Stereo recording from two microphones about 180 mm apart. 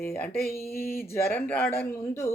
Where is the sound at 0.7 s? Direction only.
55° left (ahead or behind).